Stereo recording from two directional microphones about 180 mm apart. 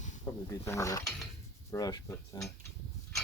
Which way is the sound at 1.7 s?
20° left (ahead or behind).